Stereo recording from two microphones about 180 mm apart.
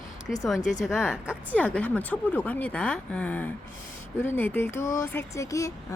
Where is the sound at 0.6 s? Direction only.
40° left (ahead or behind).